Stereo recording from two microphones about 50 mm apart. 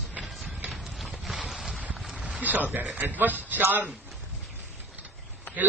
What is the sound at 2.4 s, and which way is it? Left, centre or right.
A man's voice, right.